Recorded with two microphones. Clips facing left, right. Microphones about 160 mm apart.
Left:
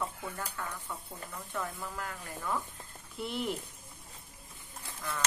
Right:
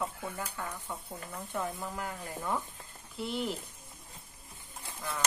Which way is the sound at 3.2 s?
Centre (ahead or behind).